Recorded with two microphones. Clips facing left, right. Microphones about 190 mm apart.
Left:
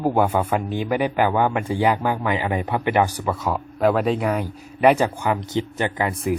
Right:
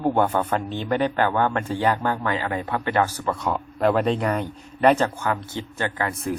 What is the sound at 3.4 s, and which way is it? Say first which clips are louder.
A man's voice: left 2 dB; centre (ahead or behind).